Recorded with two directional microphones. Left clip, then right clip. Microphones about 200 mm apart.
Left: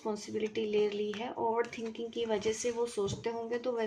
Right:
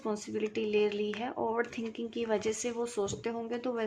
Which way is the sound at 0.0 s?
30° right (ahead or behind).